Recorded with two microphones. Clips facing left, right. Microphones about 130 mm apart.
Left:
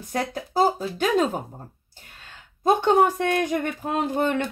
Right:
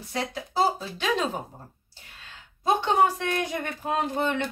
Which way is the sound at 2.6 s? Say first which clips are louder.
Left 4 dB; 50° left (ahead or behind).